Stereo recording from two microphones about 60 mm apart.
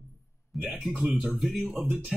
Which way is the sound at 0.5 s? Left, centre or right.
Centre.